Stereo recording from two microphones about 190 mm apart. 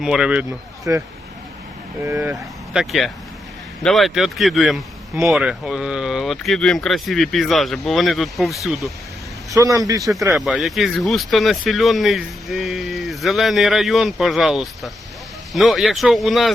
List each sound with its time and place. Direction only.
0.0 s a man's voice: 5° right (ahead or behind)
2.0 s a man's voice: 10° right (ahead or behind)
9.5 s a man's voice: 20° right (ahead or behind)
10.3 s speech: centre (ahead or behind)